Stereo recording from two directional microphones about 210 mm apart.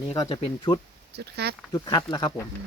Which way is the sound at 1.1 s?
50° right (ahead or behind).